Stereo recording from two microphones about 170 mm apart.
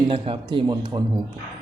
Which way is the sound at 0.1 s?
30° right (ahead or behind).